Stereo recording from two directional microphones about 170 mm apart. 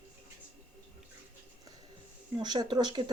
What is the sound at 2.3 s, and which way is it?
Speech, 25° right (ahead or behind).